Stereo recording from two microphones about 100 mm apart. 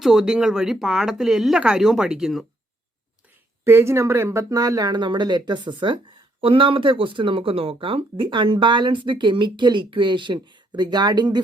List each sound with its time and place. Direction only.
0.0 s speech: 5° right (ahead or behind)
3.6 s speech: 25° right (ahead or behind); by 11.3 s 45° right (ahead or behind)